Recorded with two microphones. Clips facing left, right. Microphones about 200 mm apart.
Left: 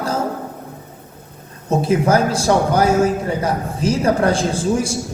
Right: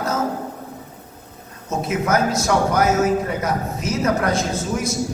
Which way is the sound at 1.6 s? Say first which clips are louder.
Left 6 dB; 30° left (ahead or behind).